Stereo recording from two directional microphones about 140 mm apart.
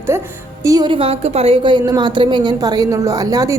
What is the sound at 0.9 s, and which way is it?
Speech, 40° right (ahead or behind).